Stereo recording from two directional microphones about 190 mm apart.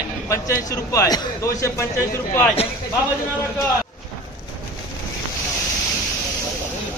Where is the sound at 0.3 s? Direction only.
15° left (ahead or behind).